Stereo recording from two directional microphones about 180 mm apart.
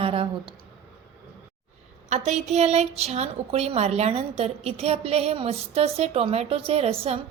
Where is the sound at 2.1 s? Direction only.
40° right (ahead or behind).